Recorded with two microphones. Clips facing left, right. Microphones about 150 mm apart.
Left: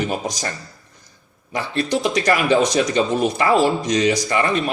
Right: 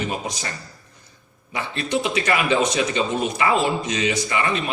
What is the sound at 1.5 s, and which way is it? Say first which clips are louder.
Speech: left 3 dB; 40° left (ahead or behind).